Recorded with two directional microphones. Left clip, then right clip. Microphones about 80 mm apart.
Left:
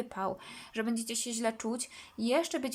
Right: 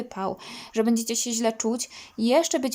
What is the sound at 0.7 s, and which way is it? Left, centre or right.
Speech, right.